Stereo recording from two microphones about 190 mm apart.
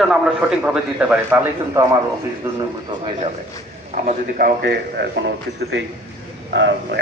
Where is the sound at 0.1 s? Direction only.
5° right (ahead or behind).